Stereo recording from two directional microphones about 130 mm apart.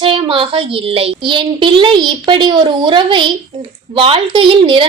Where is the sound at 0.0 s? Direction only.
45° right (ahead or behind).